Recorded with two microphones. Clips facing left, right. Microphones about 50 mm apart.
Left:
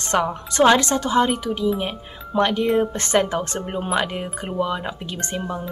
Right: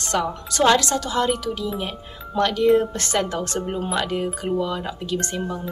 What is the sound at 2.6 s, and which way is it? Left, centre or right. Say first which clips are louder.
Speech: right 3 dB; centre.